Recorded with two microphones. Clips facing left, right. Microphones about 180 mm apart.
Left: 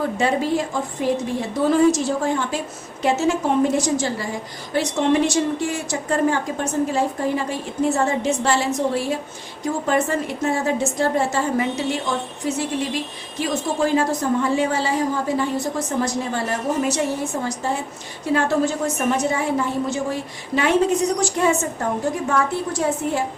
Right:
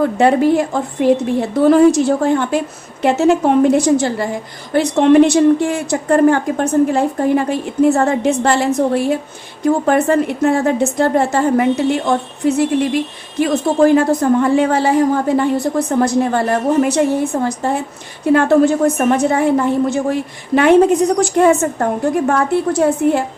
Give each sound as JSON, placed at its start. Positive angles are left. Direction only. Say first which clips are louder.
{"t": 0.2, "sound": "a woman's voice", "louder": "right 9 dB", "side_deg": -60}
{"t": 21.2, "sound": "a woman's voice", "louder": "right 8 dB", "side_deg": -55}